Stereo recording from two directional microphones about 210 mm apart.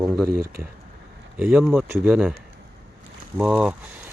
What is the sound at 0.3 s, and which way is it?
Speech, 45° right (ahead or behind).